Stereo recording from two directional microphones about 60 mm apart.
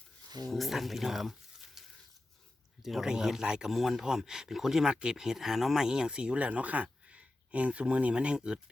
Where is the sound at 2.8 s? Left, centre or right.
Centre.